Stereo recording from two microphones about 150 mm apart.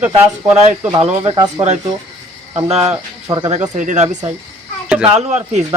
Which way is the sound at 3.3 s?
30° right (ahead or behind).